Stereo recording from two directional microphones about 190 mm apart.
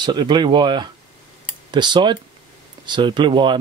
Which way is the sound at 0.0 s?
25° right (ahead or behind).